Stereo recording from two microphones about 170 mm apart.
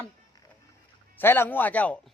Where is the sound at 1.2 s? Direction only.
10° left (ahead or behind).